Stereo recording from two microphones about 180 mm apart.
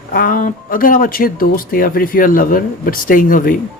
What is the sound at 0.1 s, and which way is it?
Speech, 50° left (ahead or behind).